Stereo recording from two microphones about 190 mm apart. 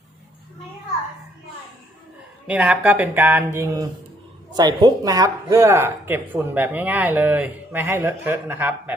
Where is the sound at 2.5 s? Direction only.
5° right (ahead or behind).